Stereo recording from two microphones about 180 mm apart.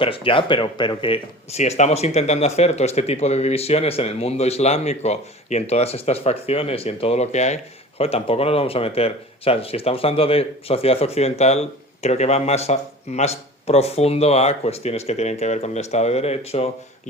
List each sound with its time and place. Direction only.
0.0 s speech: 30° left (ahead or behind)